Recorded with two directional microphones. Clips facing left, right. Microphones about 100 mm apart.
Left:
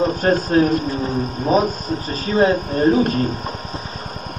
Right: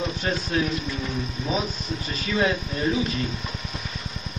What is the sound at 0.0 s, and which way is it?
Speech, 45° left (ahead or behind).